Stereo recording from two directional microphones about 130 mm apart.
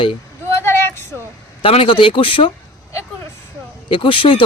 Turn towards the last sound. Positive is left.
turn(degrees=40)  # may be behind; listen again after turning